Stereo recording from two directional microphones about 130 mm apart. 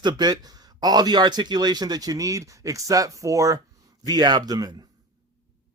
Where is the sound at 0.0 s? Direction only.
35° right (ahead or behind).